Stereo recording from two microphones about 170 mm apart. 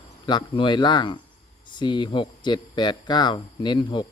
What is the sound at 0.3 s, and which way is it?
Speech, 30° left (ahead or behind).